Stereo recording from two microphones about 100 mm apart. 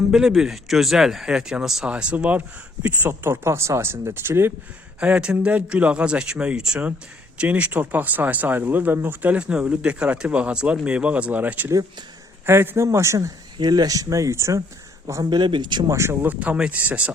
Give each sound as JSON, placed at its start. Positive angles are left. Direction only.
{"t": 0.1, "sound": "speech", "side_deg": -5}
{"t": 4.9, "sound": "a man's voice", "side_deg": -10}
{"t": 15.3, "sound": "speech", "side_deg": -50}
{"t": 15.9, "sound": "speech", "side_deg": -25}